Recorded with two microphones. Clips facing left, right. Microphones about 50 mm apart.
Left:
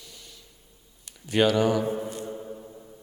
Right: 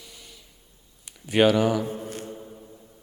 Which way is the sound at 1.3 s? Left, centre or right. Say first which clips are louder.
Right 2 dB; centre.